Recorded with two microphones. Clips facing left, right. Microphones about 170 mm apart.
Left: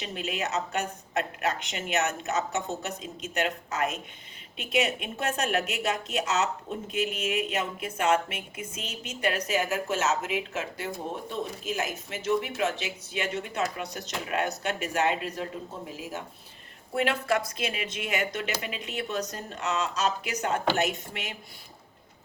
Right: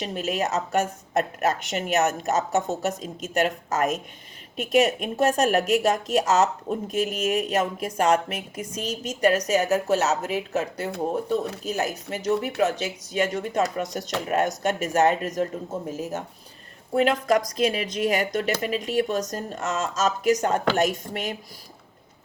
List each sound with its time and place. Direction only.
0.0 s a woman's voice: 40° right (ahead or behind)
17.6 s a woman's voice: 35° right (ahead or behind)